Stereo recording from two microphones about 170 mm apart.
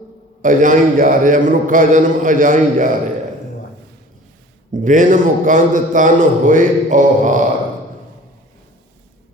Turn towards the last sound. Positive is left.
turn(degrees=-50)  # may be behind; listen again after turning